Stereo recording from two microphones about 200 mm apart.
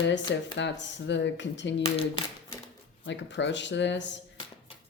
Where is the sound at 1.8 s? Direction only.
30° left (ahead or behind).